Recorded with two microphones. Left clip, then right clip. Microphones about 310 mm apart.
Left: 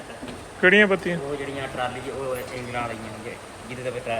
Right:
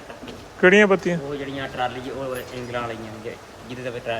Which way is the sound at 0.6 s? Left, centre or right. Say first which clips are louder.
Right 2 dB; centre.